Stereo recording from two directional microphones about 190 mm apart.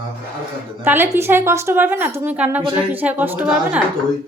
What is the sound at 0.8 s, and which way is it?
A woman's voice, 10° right (ahead or behind).